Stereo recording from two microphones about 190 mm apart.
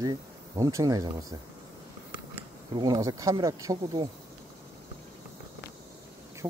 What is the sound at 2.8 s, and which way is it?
Speech, 20° right (ahead or behind).